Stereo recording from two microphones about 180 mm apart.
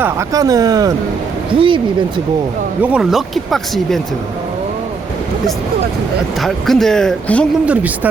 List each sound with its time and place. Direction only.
0.0 s speech: 15° right (ahead or behind)
2.8 s speech: 5° right (ahead or behind)
6.4 s speech: centre (ahead or behind)
7.6 s speech: 10° right (ahead or behind)